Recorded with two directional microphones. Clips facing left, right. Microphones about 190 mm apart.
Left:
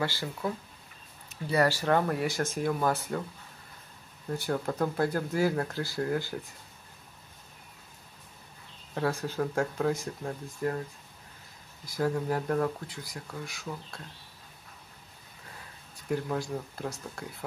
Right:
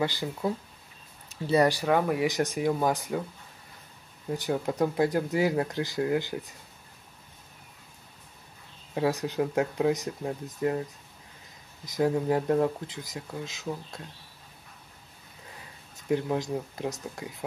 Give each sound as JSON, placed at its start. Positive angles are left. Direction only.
{"t": 0.0, "sound": "speech", "side_deg": -15}
{"t": 1.5, "sound": "speech", "side_deg": -20}
{"t": 4.3, "sound": "speech", "side_deg": -15}
{"t": 8.9, "sound": "speech", "side_deg": -15}
{"t": 11.8, "sound": "speech", "side_deg": -20}
{"t": 16.1, "sound": "speech", "side_deg": -20}